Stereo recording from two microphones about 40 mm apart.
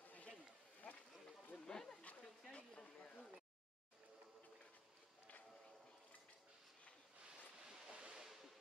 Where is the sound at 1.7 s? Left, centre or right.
Centre.